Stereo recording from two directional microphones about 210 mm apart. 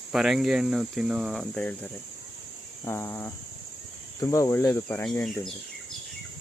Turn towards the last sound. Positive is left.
turn(degrees=5)  # may be behind; listen again after turning